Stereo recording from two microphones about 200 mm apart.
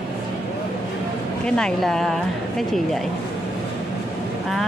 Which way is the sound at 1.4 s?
5° left (ahead or behind).